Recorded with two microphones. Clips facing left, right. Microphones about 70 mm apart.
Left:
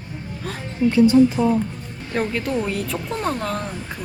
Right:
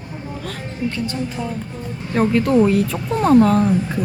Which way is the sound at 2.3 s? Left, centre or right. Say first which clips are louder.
Right 9 dB; centre.